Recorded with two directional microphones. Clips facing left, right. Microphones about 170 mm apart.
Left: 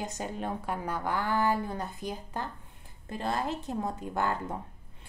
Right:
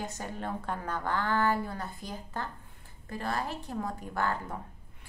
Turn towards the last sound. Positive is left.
turn(degrees=20)  # may be behind; listen again after turning